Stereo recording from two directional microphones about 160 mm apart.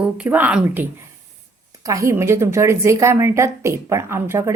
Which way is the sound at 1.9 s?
20° right (ahead or behind).